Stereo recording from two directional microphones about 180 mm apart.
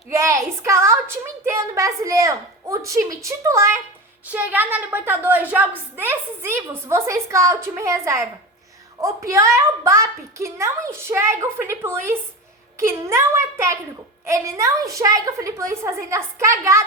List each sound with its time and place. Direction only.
0.1 s a woman's voice: 15° right (ahead or behind)